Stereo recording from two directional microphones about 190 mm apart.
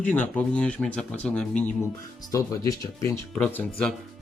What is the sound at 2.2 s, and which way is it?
Speech, 20° left (ahead or behind).